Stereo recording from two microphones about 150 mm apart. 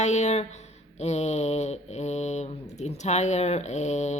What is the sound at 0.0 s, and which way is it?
Speech, 50° left (ahead or behind).